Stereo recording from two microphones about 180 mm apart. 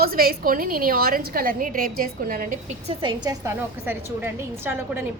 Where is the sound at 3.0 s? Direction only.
25° right (ahead or behind).